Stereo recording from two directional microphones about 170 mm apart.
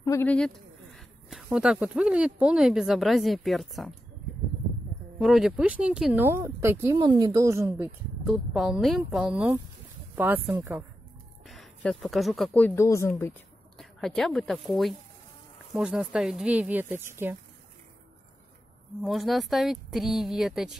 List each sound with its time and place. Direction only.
0.0 s bird: 20° left (ahead or behind)
0.9 s speech: 5° right (ahead or behind)
5.2 s speech: centre (ahead or behind)
7.0 s speech: 25° right (ahead or behind)
8.3 s speech: centre (ahead or behind)
11.4 s speech: centre (ahead or behind); by 13.1 s 15° left (ahead or behind)
13.7 s speech: centre (ahead or behind)
19.0 s speech: centre (ahead or behind)